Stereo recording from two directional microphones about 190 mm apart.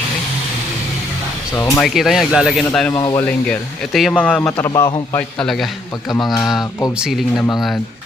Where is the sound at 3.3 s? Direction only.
5° left (ahead or behind).